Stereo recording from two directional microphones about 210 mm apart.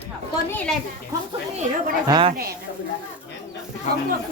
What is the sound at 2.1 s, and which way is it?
Speech, 25° right (ahead or behind).